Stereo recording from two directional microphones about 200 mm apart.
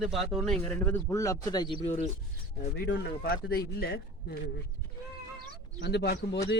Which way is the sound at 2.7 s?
55° left (ahead or behind).